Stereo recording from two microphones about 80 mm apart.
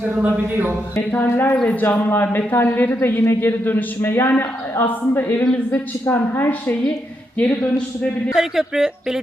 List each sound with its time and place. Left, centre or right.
0.2 s speech: right
1.1 s speech: left
5.4 s a man's voice: centre
6.1 s speech: left
8.4 s speech: centre